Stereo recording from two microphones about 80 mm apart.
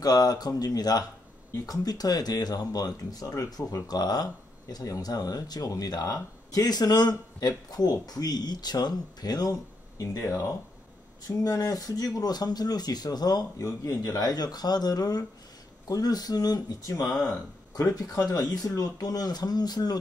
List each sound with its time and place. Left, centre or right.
0.0 s speech: left